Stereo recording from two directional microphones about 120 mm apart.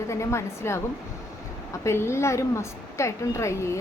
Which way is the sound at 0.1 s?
25° left (ahead or behind).